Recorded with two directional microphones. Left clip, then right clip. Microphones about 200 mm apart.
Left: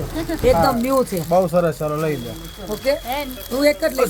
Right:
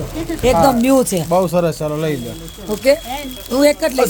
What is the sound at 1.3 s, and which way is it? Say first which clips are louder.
Speech: even; 10° right (ahead or behind).